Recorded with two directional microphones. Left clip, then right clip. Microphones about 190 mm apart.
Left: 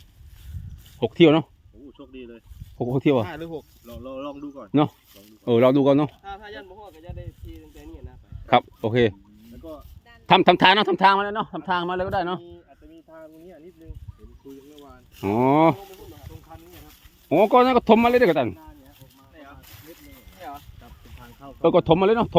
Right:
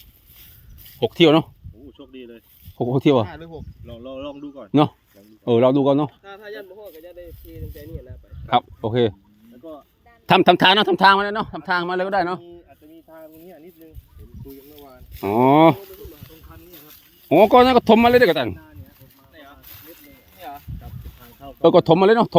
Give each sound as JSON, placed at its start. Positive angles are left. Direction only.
{"t": 0.9, "sound": "speech", "side_deg": -25}
{"t": 3.2, "sound": "speech", "side_deg": 25}
{"t": 3.8, "sound": "a man's voice", "side_deg": -20}
{"t": 5.5, "sound": "speech", "side_deg": -5}
{"t": 6.2, "sound": "speech", "side_deg": 55}
{"t": 8.4, "sound": "speech", "side_deg": -5}
{"t": 9.6, "sound": "a man's voice", "side_deg": -25}
{"t": 13.1, "sound": "a sound", "side_deg": -30}
{"t": 14.4, "sound": "a sound", "side_deg": -20}
{"t": 17.2, "sound": "a man's voice", "side_deg": -35}
{"t": 19.4, "sound": "a sound", "side_deg": -25}
{"t": 21.2, "sound": "speech", "side_deg": -20}